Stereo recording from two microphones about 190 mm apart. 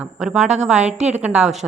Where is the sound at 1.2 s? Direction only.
5° right (ahead or behind).